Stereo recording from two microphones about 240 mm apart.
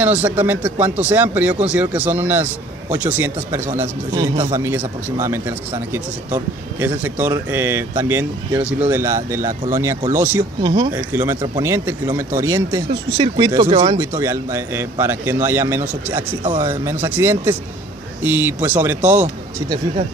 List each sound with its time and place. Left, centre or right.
0.0 s speech: centre; by 13.9 s right
13.9 s speech: centre